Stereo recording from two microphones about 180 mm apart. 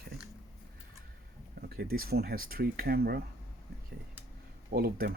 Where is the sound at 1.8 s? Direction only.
60° right (ahead or behind).